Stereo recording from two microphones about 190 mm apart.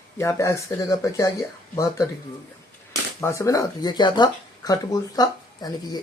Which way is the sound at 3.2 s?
15° left (ahead or behind).